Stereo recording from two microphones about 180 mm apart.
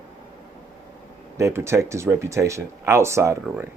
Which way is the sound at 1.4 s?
15° right (ahead or behind).